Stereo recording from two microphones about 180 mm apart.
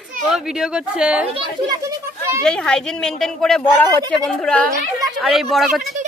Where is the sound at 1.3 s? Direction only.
20° right (ahead or behind).